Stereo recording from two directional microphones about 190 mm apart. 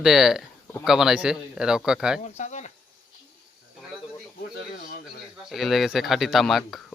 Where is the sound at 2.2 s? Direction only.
40° left (ahead or behind).